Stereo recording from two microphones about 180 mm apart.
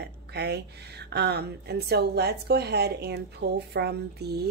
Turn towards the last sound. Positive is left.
turn(degrees=-65)  # may be behind; listen again after turning